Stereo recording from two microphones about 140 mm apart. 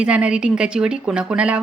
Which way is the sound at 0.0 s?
10° right (ahead or behind).